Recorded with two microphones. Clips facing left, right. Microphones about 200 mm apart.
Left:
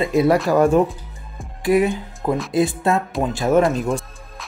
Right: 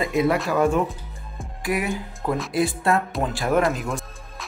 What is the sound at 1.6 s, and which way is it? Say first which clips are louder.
Speech: left 8 dB; 25° left (ahead or behind).